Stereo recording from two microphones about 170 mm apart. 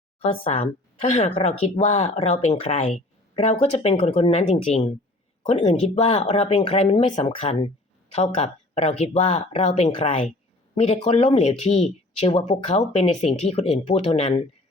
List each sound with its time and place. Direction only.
0.2 s speech: 35° left (ahead or behind)
8.1 s speech: 40° left (ahead or behind)